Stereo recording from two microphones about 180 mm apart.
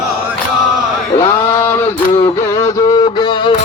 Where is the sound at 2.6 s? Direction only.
20° left (ahead or behind).